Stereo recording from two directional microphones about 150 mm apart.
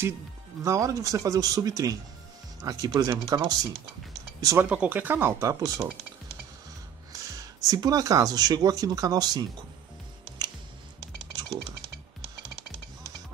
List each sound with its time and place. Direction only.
0.7 s speech: 20° right (ahead or behind)
4.6 s speech: 10° right (ahead or behind)
7.1 s a sound: 20° right (ahead or behind)
7.6 s speech: 25° right (ahead or behind)